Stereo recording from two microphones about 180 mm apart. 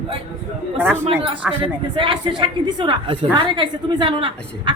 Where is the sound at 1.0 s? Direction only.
30° right (ahead or behind).